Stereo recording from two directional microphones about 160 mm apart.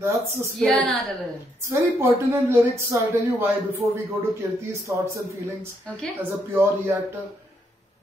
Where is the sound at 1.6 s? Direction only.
15° right (ahead or behind).